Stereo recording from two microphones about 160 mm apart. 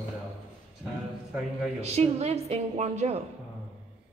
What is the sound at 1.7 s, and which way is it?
A woman's voice, 40° right (ahead or behind).